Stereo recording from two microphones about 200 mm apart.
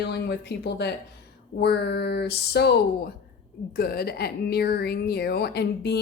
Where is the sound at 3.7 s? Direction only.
50° left (ahead or behind).